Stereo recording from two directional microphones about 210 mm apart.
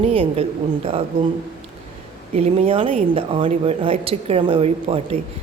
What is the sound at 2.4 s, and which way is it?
A man's voice, 30° right (ahead or behind).